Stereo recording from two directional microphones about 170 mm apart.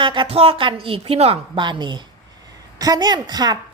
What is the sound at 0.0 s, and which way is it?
A woman's voice, 30° right (ahead or behind).